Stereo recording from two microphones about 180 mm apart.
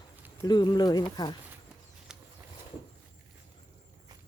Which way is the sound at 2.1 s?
5° right (ahead or behind).